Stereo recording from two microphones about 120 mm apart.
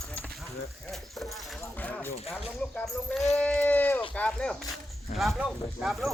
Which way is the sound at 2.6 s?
10° left (ahead or behind).